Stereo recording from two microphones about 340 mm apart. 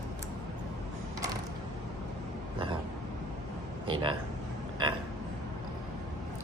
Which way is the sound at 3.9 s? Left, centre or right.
Centre.